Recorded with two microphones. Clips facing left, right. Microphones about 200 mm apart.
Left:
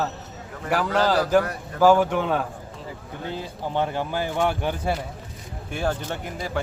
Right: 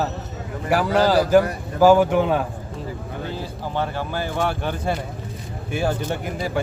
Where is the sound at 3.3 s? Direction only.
20° left (ahead or behind).